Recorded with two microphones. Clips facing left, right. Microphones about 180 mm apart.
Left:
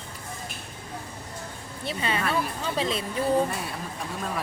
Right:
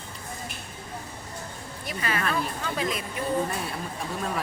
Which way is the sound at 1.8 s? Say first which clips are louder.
Left 1 dB; 25° left (ahead or behind).